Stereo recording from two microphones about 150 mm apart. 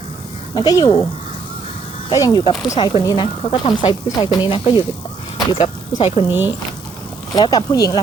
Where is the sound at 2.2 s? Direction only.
35° left (ahead or behind).